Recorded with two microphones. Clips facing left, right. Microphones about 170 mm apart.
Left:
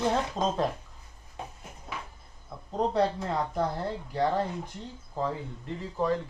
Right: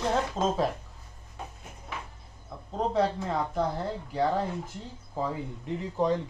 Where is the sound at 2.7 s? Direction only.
Centre (ahead or behind).